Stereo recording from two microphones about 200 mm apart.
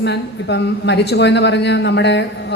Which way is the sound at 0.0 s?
60° left (ahead or behind).